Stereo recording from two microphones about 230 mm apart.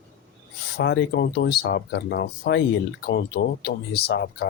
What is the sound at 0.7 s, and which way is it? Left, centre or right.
Speech, left.